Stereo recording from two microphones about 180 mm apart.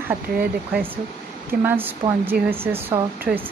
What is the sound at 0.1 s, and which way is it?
Speech, 10° right (ahead or behind).